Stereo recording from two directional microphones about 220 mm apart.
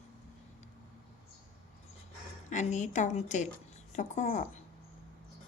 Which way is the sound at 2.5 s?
35° left (ahead or behind).